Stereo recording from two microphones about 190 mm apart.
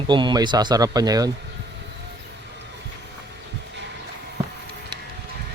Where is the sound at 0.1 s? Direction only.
25° right (ahead or behind).